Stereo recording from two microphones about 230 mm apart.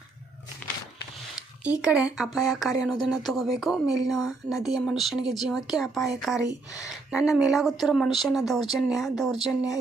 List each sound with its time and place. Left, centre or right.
1.8 s speech: centre
3.8 s a woman's voice: centre
4.1 s speech: centre
6.8 s a sound: centre
7.5 s speech: centre